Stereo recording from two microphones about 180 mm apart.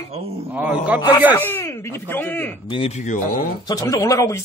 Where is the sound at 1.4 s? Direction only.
10° left (ahead or behind).